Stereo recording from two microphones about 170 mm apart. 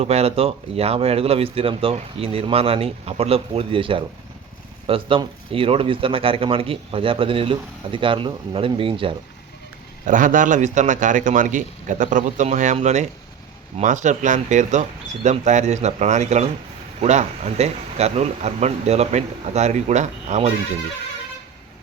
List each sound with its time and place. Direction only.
0.0 s speech: 40° right (ahead or behind)
10.1 s a man's voice: 50° right (ahead or behind)